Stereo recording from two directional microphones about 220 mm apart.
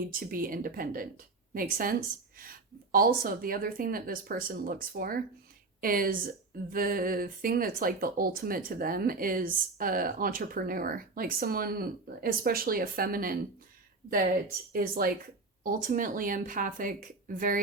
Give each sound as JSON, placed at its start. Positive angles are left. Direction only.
{"t": 0.1, "sound": "speech", "side_deg": -40}